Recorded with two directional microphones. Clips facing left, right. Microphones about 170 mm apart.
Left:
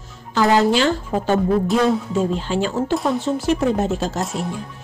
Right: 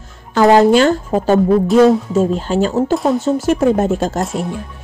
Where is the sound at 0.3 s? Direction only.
50° right (ahead or behind).